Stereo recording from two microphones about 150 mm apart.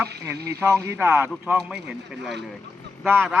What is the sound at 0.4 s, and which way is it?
Speech, 20° right (ahead or behind).